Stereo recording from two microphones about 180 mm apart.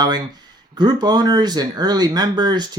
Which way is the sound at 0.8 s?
25° right (ahead or behind).